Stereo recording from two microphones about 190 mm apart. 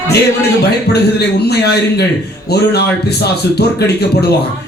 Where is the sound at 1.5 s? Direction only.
60° left (ahead or behind).